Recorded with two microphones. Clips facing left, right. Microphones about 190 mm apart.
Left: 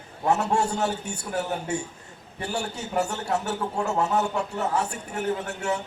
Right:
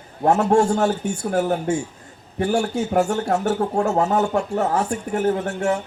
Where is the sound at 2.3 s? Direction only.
65° right (ahead or behind).